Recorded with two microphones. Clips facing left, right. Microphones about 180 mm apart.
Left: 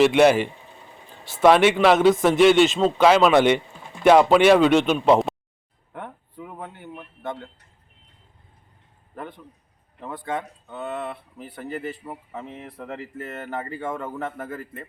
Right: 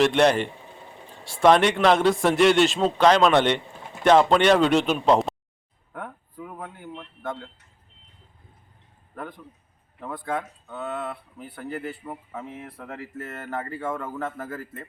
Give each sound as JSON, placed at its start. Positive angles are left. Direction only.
{"t": 0.0, "sound": "a man's voice", "side_deg": 5}
{"t": 6.3, "sound": "speech", "side_deg": 5}
{"t": 10.7, "sound": "speech", "side_deg": 25}
{"t": 12.0, "sound": "a man's voice", "side_deg": 5}